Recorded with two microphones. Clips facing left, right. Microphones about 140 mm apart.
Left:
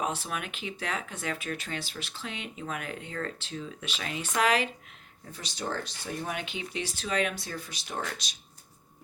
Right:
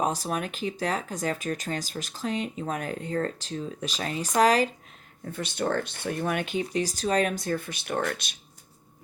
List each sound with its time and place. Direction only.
0.0 s speech: 40° right (ahead or behind)
5.3 s speech: 55° right (ahead or behind)